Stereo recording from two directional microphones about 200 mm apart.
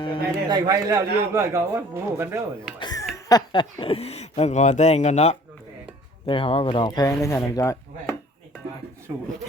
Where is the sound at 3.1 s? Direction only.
20° left (ahead or behind).